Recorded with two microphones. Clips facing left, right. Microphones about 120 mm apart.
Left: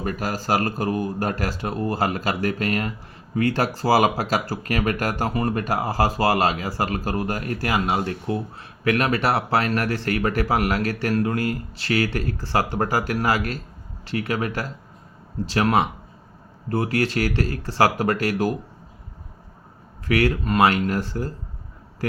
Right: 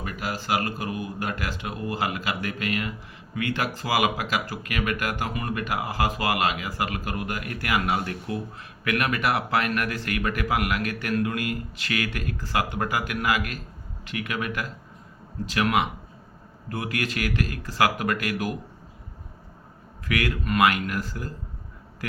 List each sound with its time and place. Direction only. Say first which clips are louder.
0.0 s speech: left 5 dB; 40° left (ahead or behind)
20.1 s speech: left 6 dB; 30° left (ahead or behind)